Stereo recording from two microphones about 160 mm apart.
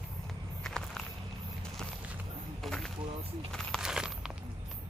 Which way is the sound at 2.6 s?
Centre (ahead or behind).